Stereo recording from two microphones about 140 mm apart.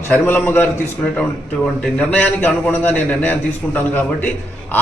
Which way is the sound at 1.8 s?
10° left (ahead or behind).